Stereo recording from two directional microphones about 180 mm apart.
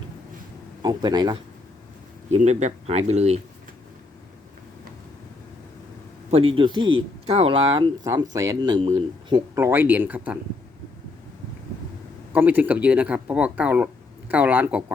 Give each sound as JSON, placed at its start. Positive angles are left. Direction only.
{"t": 0.8, "sound": "speech", "side_deg": -25}
{"t": 2.3, "sound": "speech", "side_deg": -40}
{"t": 6.3, "sound": "speech", "side_deg": -30}
{"t": 12.3, "sound": "speech", "side_deg": -10}